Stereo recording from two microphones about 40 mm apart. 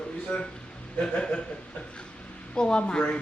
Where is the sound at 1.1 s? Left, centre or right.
Left.